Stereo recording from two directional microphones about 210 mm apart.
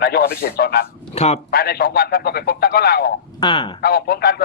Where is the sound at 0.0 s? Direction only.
50° left (ahead or behind).